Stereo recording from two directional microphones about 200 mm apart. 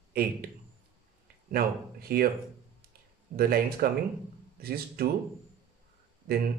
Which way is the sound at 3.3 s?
50° right (ahead or behind).